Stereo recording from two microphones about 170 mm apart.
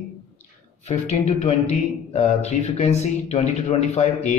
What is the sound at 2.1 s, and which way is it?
Speech, 40° left (ahead or behind).